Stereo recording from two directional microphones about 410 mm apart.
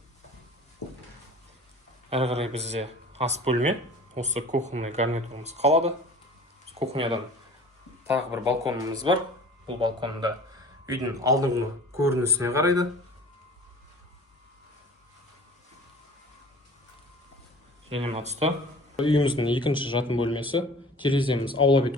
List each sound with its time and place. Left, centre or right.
2.0 s speech: centre
17.9 s speech: centre
18.9 s speech: centre